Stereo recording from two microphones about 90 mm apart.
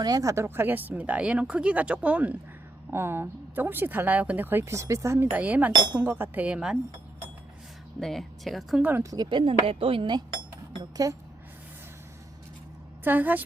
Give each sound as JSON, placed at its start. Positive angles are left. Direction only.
{"t": 0.0, "sound": "speech", "side_deg": -40}
{"t": 2.9, "sound": "speech", "side_deg": -25}
{"t": 7.9, "sound": "speech", "side_deg": 0}
{"t": 8.8, "sound": "speech", "side_deg": -25}
{"t": 9.2, "sound": "speech", "side_deg": -70}
{"t": 10.8, "sound": "speech", "side_deg": -45}
{"t": 13.1, "sound": "speech", "side_deg": -20}